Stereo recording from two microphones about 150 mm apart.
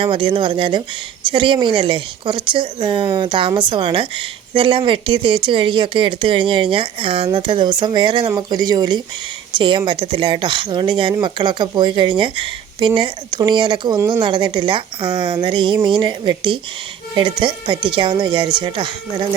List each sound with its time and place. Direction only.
0.0 s speech: 35° right (ahead or behind)